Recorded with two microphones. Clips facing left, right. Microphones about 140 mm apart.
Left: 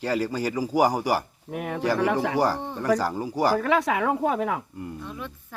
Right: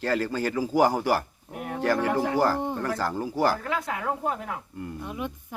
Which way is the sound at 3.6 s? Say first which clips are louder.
Left 7 dB; 85° left.